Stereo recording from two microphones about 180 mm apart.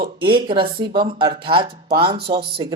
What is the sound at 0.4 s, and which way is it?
Speech, 25° right (ahead or behind).